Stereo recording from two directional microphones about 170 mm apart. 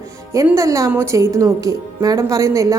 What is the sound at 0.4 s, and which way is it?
A woman's voice, 20° right (ahead or behind).